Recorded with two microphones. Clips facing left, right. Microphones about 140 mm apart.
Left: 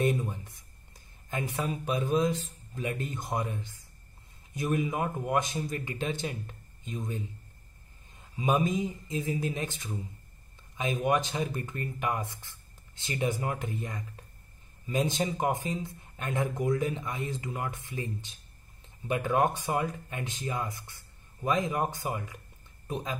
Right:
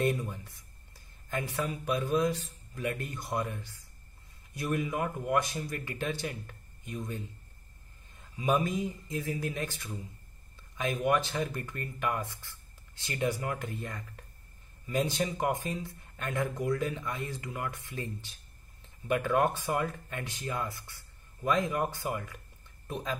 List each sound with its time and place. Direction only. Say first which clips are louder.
0.0 s speech: left 2 dB; 20° left (ahead or behind)
8.4 s speech: left 2 dB; 20° left (ahead or behind)